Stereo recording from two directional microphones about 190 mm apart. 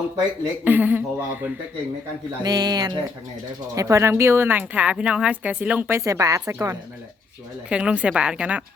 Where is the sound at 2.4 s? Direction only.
20° right (ahead or behind).